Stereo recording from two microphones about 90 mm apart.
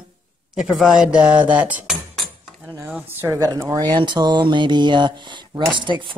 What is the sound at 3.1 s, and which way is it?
Speech, 25° right (ahead or behind).